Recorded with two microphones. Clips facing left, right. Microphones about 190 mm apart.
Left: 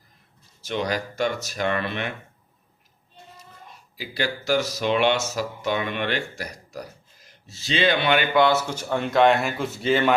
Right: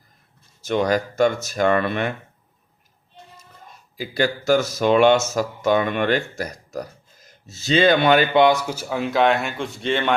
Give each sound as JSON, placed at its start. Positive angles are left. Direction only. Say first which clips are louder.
{"t": 0.6, "sound": "speech", "louder": "right 6 dB", "side_deg": -50}
{"t": 3.9, "sound": "speech", "louder": "right 6 dB", "side_deg": -45}
{"t": 8.3, "sound": "speech", "louder": "right 3 dB", "side_deg": -20}